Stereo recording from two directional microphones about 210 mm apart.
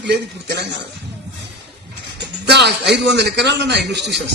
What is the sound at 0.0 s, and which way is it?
Speech, 55° right (ahead or behind).